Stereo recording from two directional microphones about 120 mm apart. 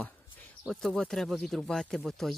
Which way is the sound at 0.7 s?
5° left (ahead or behind).